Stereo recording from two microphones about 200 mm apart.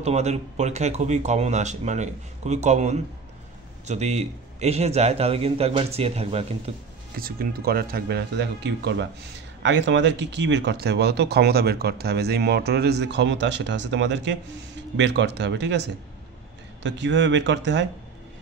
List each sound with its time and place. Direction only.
0.0 s speech: 35° right (ahead or behind)
7.2 s speech: 50° right (ahead or behind)
16.8 s speech: 65° right (ahead or behind)